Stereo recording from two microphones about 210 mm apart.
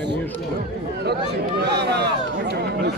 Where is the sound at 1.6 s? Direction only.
50° right (ahead or behind).